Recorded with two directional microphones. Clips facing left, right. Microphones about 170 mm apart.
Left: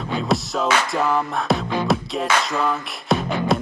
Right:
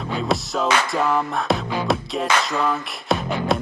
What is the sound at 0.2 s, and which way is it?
Music, centre (ahead or behind).